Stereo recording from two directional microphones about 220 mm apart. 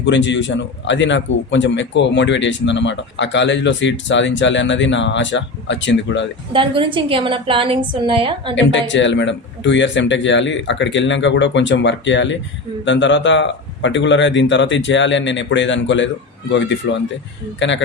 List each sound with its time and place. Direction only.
0.0 s a man's voice: 55° left (ahead or behind)
6.5 s a woman's voice: 25° right (ahead or behind)
8.5 s a man's voice: 55° left (ahead or behind)